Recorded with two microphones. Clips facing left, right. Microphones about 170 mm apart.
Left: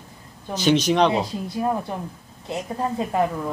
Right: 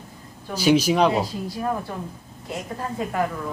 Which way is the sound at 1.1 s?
20° left (ahead or behind).